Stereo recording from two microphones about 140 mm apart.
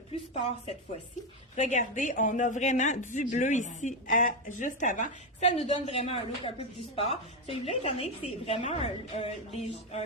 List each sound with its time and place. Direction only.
0.1 s speech: 50° left (ahead or behind)
1.5 s a woman's voice: 60° left (ahead or behind)